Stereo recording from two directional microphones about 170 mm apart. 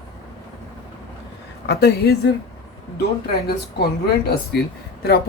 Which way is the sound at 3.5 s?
70° left (ahead or behind).